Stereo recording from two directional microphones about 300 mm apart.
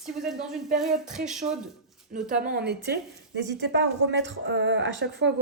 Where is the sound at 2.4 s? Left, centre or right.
Right.